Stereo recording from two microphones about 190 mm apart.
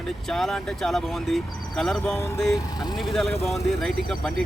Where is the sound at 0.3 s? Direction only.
Centre (ahead or behind).